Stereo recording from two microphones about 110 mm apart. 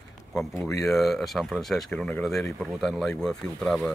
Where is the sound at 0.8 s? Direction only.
Centre (ahead or behind).